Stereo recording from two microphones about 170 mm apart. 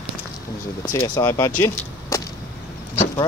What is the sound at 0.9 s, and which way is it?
Speech, 25° left (ahead or behind).